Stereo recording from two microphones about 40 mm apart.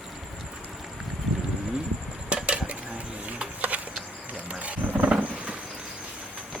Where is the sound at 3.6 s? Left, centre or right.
Right.